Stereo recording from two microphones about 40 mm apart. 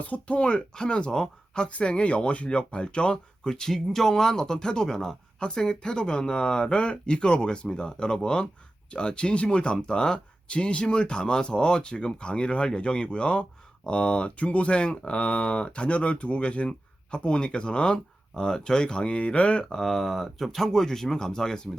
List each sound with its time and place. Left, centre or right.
0.1 s speech: left
19.7 s speech: centre